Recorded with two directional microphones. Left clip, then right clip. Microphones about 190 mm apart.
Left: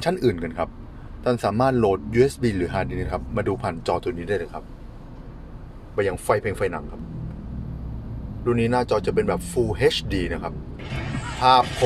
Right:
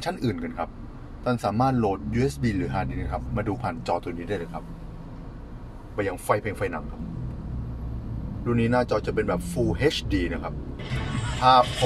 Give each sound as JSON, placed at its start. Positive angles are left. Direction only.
{"t": 0.0, "sound": "speech", "side_deg": 35}
{"t": 5.9, "sound": "speech", "side_deg": 30}
{"t": 8.5, "sound": "speech", "side_deg": 30}